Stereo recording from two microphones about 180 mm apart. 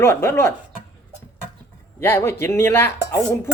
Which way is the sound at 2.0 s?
15° left (ahead or behind).